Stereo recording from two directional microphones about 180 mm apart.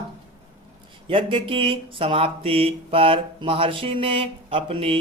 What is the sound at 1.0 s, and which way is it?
Speech, 30° right (ahead or behind).